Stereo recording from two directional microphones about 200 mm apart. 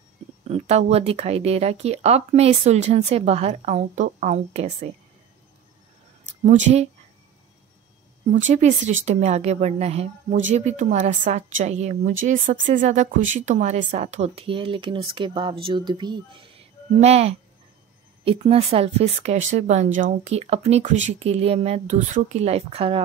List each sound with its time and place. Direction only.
0.5 s speech: 30° right (ahead or behind)
6.4 s speech: 35° right (ahead or behind)
8.4 s speech: 35° right (ahead or behind)